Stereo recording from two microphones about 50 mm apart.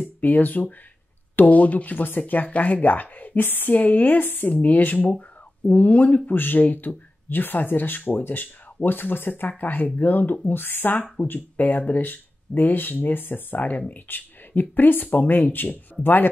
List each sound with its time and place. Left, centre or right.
0.2 s speech: left